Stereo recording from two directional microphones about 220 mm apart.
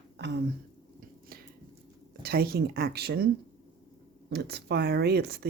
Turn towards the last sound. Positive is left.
turn(degrees=-45)  # may be behind; listen again after turning